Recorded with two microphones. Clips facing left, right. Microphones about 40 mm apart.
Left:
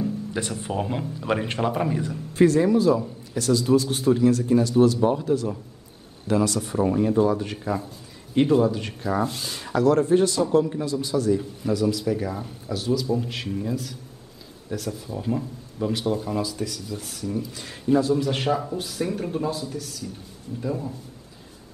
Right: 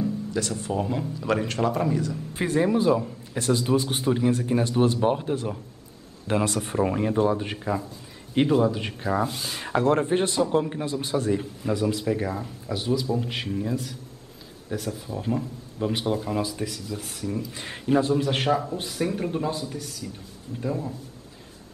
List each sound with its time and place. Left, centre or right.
0.3 s speech: left
2.3 s a man's voice: centre; by 7.0 s right
7.0 s a man's voice: right
8.4 s speech: centre
9.2 s speech: centre
9.6 s a man's voice: right; by 13.9 s centre
15.0 s speech: centre
15.9 s a man's voice: centre
17.5 s a man's voice: right
18.5 s speech: centre
18.8 s speech: centre